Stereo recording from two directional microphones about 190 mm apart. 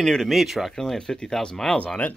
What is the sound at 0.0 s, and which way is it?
Speech, centre (ahead or behind).